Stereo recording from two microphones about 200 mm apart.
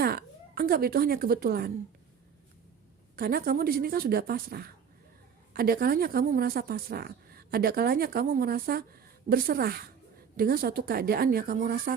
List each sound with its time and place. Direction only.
0.0 s a woman's voice: 50° right (ahead or behind)
3.2 s a woman's voice: 50° right (ahead or behind)